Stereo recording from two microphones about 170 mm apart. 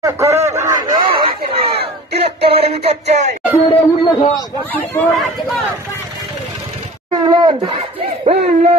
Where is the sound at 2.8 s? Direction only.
40° right (ahead or behind).